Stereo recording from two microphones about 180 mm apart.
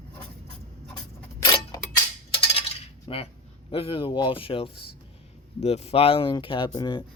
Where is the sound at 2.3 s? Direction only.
30° left (ahead or behind).